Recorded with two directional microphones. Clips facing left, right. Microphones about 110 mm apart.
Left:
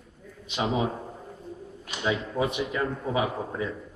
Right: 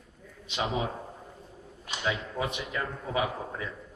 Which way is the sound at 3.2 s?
25° left (ahead or behind).